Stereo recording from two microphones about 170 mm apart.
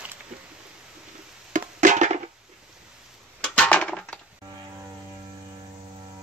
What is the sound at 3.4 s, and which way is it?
Dishes, 5° left (ahead or behind).